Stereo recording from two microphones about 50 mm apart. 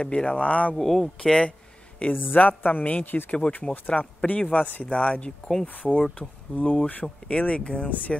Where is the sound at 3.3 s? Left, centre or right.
Left.